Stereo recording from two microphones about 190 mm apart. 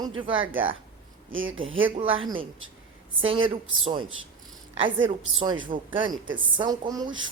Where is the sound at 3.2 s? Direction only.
25° right (ahead or behind).